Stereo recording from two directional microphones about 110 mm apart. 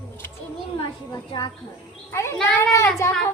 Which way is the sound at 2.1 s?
25° left (ahead or behind).